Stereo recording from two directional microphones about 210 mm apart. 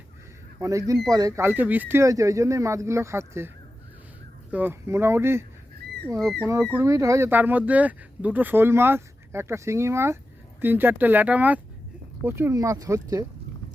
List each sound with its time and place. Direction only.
0.6 s speech: 15° right (ahead or behind)
4.5 s speech: 10° right (ahead or behind)